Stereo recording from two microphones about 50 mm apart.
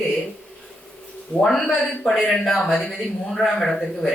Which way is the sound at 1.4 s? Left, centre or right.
Centre.